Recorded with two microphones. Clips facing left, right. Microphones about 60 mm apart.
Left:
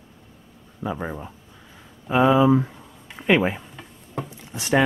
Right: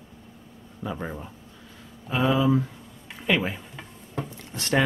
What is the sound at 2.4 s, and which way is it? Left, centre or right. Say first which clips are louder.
Speech: left 5 dB; left.